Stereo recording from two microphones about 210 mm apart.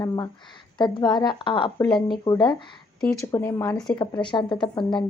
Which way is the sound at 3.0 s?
5° left (ahead or behind).